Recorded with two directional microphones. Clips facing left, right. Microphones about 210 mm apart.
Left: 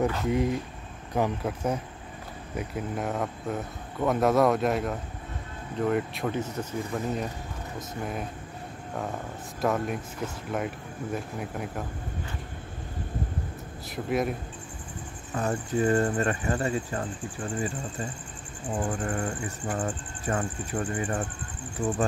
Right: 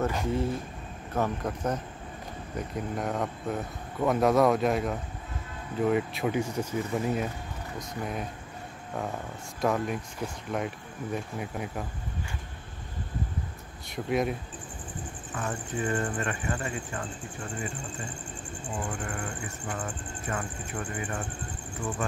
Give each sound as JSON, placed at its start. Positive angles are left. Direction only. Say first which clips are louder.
{"t": 0.3, "sound": "speech", "louder": "left 3 dB", "side_deg": 15}
{"t": 9.6, "sound": "speech", "louder": "even", "side_deg": 0}
{"t": 13.8, "sound": "speech", "louder": "even", "side_deg": 0}
{"t": 15.3, "sound": "speech", "louder": "left 6 dB", "side_deg": 40}
{"t": 18.8, "sound": "speech", "louder": "left 6 dB", "side_deg": 35}